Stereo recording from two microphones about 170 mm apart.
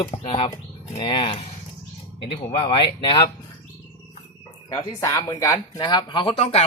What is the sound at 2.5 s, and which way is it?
Speech, 30° left (ahead or behind).